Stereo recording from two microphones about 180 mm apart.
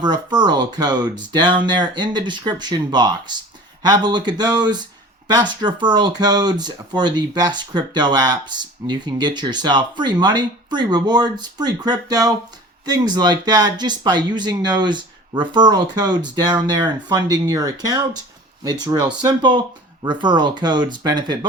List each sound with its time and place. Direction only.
0.0 s speech: 25° right (ahead or behind)